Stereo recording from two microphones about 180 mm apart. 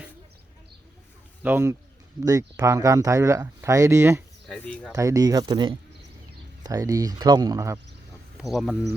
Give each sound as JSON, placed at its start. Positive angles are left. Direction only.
{"t": 1.4, "sound": "speech", "side_deg": -10}
{"t": 4.4, "sound": "speech", "side_deg": 5}
{"t": 4.9, "sound": "speech", "side_deg": -20}
{"t": 8.4, "sound": "speech", "side_deg": 0}